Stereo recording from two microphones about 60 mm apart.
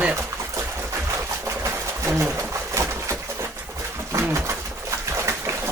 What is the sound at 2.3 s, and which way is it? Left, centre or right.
Pigeon, right.